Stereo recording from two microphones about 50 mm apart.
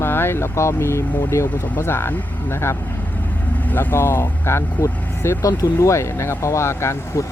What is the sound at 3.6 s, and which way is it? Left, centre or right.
Speech, left.